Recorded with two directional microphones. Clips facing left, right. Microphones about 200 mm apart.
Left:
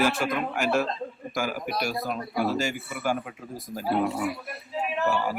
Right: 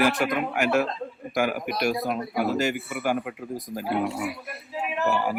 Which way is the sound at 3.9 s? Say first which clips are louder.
Left 2 dB; 5° right (ahead or behind).